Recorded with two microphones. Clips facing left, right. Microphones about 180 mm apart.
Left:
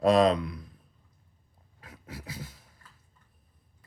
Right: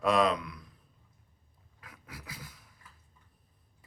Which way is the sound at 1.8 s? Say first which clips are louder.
Left 5 dB; 25° left (ahead or behind).